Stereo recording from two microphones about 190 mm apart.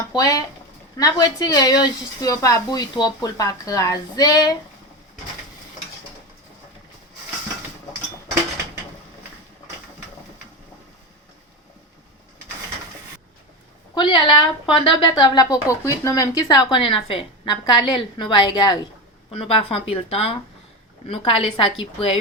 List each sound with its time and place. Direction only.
0.0 s speech: 20° left (ahead or behind)
13.9 s speech: 25° left (ahead or behind)